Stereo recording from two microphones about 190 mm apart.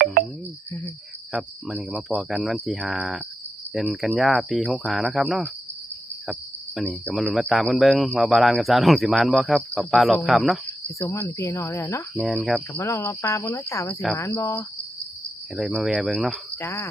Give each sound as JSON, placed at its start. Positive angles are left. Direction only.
{"t": 1.3, "sound": "speech", "side_deg": -5}
{"t": 6.7, "sound": "speech", "side_deg": 0}
{"t": 11.0, "sound": "speech", "side_deg": 10}
{"t": 12.3, "sound": "speech", "side_deg": 0}
{"t": 12.7, "sound": "speech", "side_deg": 15}
{"t": 15.5, "sound": "speech", "side_deg": 0}
{"t": 16.6, "sound": "speech", "side_deg": 15}